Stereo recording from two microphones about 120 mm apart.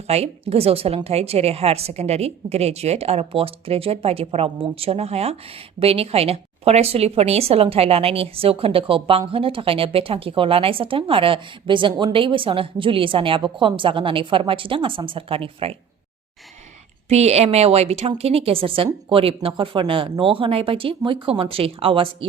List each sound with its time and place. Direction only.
0.1 s a woman's voice: 60° right (ahead or behind)
17.1 s a woman's voice: 65° right (ahead or behind); by 22.3 s 50° right (ahead or behind)